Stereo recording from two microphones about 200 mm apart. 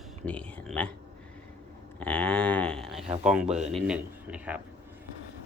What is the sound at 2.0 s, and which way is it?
A man's voice, 5° left (ahead or behind).